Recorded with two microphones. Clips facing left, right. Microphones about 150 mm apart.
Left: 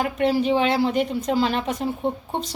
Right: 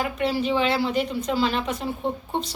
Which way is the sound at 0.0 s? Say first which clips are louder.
Left 4 dB; 45° left (ahead or behind).